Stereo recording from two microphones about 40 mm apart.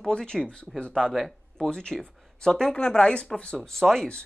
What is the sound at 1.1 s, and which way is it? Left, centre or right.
Speech, centre.